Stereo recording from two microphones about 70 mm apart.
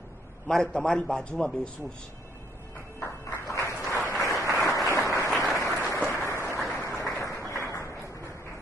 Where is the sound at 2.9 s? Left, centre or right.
Left.